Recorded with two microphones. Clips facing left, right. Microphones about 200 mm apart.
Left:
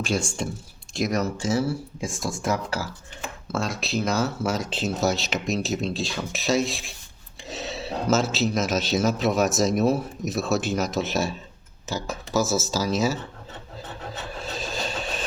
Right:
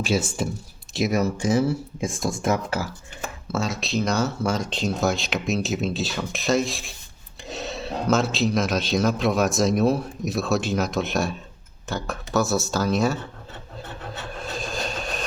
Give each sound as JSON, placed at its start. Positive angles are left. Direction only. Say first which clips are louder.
{"t": 0.0, "sound": "a man's voice", "louder": "right 2 dB", "side_deg": -5}
{"t": 3.5, "sound": "a man's voice", "louder": "right 1 dB", "side_deg": 0}
{"t": 14.6, "sound": "vehicle", "louder": "even", "side_deg": 0}